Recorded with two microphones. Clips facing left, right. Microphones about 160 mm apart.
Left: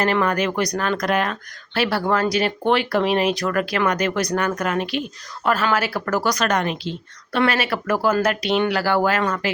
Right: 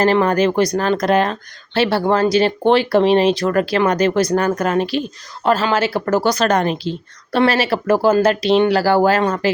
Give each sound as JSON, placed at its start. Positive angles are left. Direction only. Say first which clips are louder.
{"t": 0.0, "sound": "speech", "louder": "right 6 dB", "side_deg": -30}